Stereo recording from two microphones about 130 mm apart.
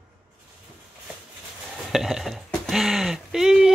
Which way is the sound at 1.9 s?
Centre (ahead or behind).